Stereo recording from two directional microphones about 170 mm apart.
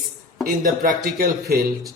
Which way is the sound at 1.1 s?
60° right (ahead or behind).